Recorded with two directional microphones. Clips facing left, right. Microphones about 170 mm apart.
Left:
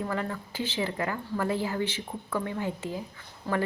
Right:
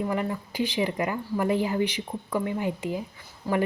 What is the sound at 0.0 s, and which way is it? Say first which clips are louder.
Speech: right 4 dB; 15° right (ahead or behind).